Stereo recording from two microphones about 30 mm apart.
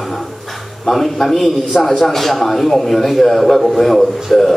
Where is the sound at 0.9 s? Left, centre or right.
Centre.